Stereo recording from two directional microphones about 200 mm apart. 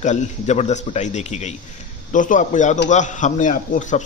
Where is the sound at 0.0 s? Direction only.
35° left (ahead or behind).